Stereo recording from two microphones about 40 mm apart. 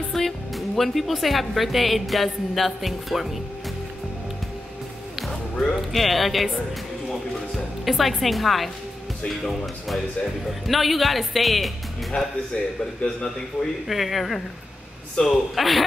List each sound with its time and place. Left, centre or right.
0.1 s speech: centre
5.3 s music: centre
5.8 s speech: centre
7.5 s speech: centre
9.8 s speech: centre
12.5 s a man's voice: left
13.8 s speech: centre
15.2 s a man's voice: left
15.5 s speech: centre